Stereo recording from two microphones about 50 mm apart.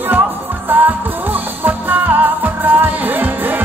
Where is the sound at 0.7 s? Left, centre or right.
Right.